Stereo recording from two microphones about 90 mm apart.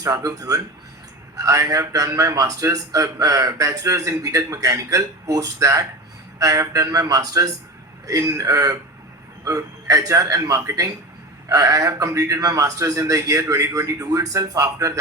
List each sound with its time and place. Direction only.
0.0 s a man's voice: 40° right (ahead or behind)